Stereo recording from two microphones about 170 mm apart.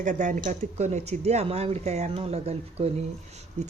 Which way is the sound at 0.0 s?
50° right (ahead or behind).